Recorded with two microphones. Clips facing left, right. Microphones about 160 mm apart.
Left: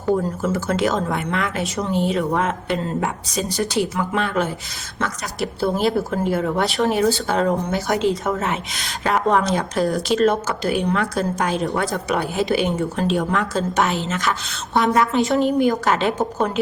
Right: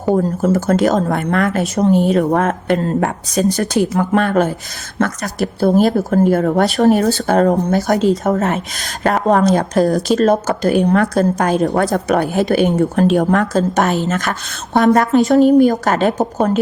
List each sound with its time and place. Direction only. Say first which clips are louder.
0.1 s a woman's voice: right 5 dB; 40° right (ahead or behind)